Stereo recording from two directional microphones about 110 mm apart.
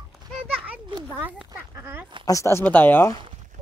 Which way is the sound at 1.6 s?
20° right (ahead or behind).